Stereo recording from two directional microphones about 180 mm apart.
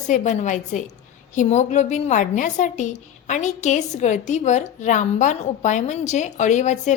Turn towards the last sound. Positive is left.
turn(degrees=40)  # may be behind; listen again after turning